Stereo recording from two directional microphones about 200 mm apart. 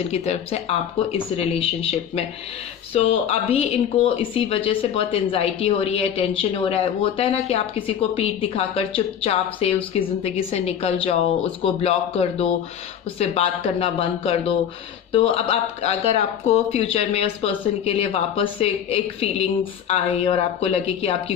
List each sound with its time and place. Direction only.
0.1 s speech: 30° left (ahead or behind)
15.8 s speech: 30° left (ahead or behind)